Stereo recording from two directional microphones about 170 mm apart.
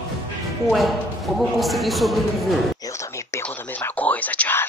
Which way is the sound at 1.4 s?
Centre (ahead or behind).